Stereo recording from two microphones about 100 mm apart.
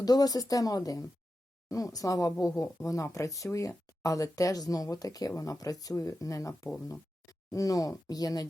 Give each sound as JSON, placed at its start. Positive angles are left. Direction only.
{"t": 0.0, "sound": "speech", "side_deg": 40}